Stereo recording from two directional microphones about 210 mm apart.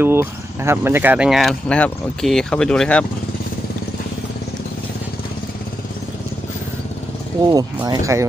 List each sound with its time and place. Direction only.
0.0 s speech: 10° right (ahead or behind)
7.5 s speech: 15° right (ahead or behind)